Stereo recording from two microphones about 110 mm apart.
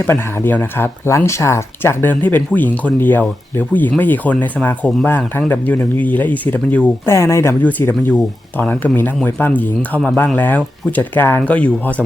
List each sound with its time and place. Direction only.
0.1 s speech: 20° left (ahead or behind)
7.1 s speech: 25° left (ahead or behind)